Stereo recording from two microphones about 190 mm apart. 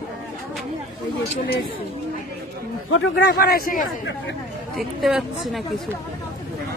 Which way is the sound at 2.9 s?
70° left (ahead or behind).